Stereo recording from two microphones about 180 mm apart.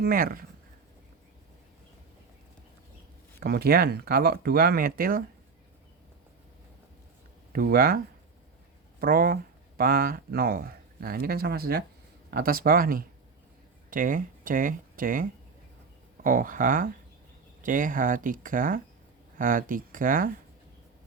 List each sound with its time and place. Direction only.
0.0 s speech: 55° right (ahead or behind)
3.4 s speech: 60° right (ahead or behind)
7.5 s speech: 55° right (ahead or behind)
9.0 s speech: 55° right (ahead or behind)